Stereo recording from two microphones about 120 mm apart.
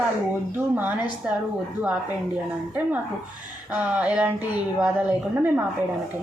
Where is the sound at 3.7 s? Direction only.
10° right (ahead or behind).